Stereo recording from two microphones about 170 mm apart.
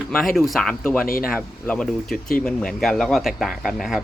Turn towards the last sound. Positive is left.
turn(degrees=0)  # may be behind; listen again after turning